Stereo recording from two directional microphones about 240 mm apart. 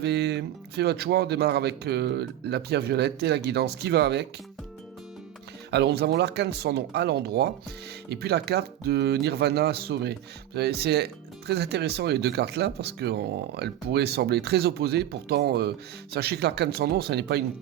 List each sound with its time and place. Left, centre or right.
0.0 s speech: right
5.7 s speech: right